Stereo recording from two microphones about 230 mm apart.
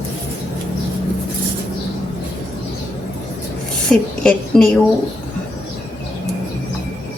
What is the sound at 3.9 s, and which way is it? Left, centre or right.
Speech, centre.